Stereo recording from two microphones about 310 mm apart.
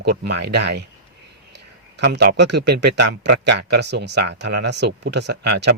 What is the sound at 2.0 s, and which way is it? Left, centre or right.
Speech, right.